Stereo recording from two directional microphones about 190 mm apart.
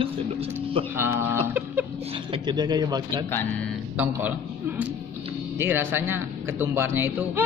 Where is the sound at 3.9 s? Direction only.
10° right (ahead or behind).